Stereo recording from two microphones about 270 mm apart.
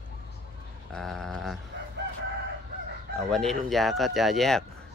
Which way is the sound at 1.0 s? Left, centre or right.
Centre.